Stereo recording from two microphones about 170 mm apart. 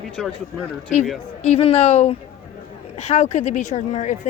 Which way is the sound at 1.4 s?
40° left (ahead or behind).